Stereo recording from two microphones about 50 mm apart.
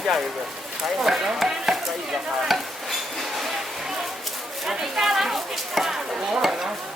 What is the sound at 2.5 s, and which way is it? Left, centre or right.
Stir, centre.